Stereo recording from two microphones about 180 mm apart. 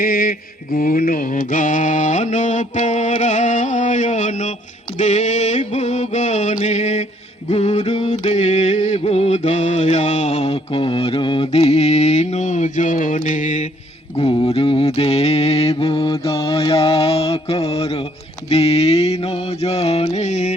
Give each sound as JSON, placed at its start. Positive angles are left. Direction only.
{"t": 0.0, "sound": "mantra", "side_deg": 55}
{"t": 4.9, "sound": "music", "side_deg": 40}
{"t": 14.2, "sound": "music", "side_deg": 30}